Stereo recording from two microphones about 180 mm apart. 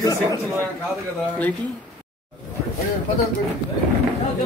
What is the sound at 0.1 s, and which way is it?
Speech, 20° right (ahead or behind).